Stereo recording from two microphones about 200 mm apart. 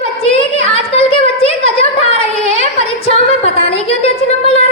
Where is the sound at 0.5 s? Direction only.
30° left (ahead or behind).